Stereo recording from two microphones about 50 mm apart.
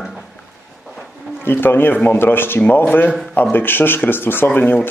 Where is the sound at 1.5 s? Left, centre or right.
Left.